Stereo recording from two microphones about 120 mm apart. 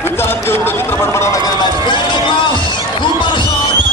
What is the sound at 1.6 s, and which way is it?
Run, 40° left (ahead or behind).